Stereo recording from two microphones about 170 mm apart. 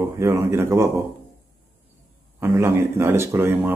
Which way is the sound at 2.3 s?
15° right (ahead or behind).